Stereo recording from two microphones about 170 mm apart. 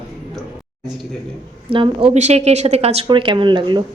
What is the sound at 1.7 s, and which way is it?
Speech, 30° right (ahead or behind).